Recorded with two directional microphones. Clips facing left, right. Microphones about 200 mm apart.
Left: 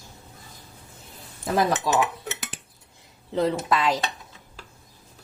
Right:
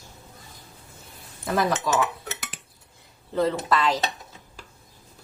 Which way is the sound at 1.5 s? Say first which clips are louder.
Left 1 dB; 30° left (ahead or behind).